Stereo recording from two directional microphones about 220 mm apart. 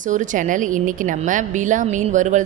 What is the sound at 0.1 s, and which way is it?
A woman's voice, 35° right (ahead or behind).